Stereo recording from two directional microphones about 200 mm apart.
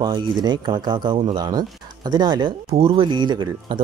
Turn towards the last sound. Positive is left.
turn(degrees=-20)  # may be behind; listen again after turning